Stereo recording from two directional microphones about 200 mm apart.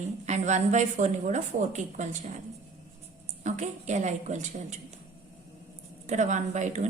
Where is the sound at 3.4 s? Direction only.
35° right (ahead or behind).